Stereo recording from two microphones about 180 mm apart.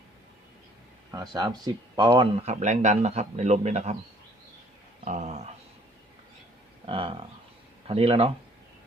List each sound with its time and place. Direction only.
1.1 s speech: 20° right (ahead or behind)
2.4 s a man's voice: 40° right (ahead or behind)
5.0 s a sound: 40° right (ahead or behind)
6.8 s a man's voice: 30° right (ahead or behind)